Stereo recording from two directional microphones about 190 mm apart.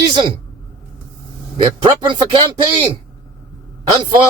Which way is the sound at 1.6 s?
25° right (ahead or behind).